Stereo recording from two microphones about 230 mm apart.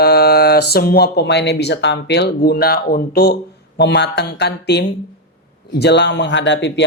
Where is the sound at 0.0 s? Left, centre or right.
Left.